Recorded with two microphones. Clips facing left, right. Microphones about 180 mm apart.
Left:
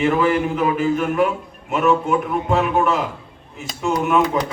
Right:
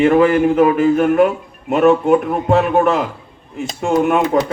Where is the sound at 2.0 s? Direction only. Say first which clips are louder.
Right 6 dB; 55° right (ahead or behind).